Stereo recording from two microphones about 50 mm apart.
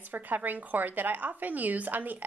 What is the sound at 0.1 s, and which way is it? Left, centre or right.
Speech, right.